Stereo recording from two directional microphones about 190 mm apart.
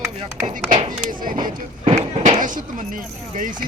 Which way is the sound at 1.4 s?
30° right (ahead or behind).